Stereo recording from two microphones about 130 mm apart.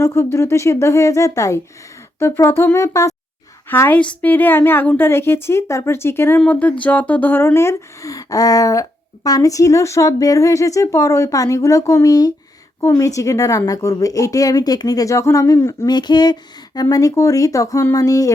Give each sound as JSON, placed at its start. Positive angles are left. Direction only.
{"t": 0.0, "sound": "a woman's voice", "side_deg": 20}
{"t": 15.9, "sound": "speech", "side_deg": 35}